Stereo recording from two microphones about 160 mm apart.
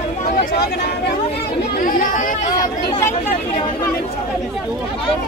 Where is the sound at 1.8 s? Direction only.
55° left (ahead or behind).